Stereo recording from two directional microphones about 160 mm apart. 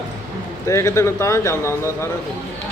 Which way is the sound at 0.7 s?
20° left (ahead or behind).